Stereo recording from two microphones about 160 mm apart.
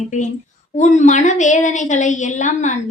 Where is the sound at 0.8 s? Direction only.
45° left (ahead or behind).